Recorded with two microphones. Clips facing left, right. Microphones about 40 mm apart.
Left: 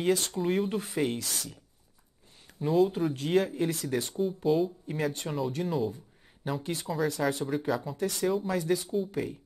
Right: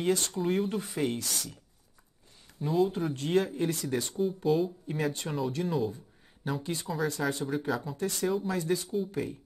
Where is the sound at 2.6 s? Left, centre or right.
Centre.